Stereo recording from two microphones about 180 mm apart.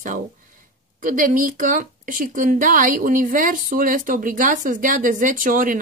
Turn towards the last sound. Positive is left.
turn(degrees=-50)  # may be behind; listen again after turning